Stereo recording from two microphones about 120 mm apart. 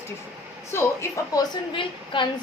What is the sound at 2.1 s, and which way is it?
Speech, 45° left (ahead or behind).